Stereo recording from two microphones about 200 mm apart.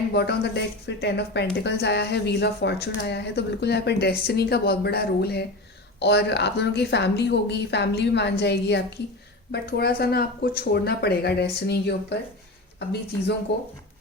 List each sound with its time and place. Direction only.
0.1 s a woman's voice: 55° left (ahead or behind)
13.5 s a woman's voice: 60° left (ahead or behind)